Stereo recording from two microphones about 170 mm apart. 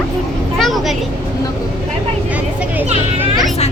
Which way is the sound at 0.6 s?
Centre (ahead or behind).